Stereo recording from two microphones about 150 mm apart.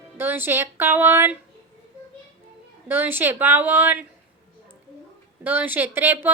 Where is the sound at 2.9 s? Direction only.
15° right (ahead or behind).